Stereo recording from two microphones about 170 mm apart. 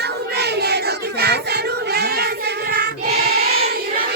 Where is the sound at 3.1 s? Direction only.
65° right (ahead or behind).